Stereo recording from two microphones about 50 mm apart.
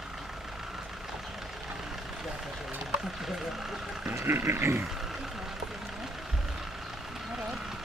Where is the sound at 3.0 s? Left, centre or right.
Centre.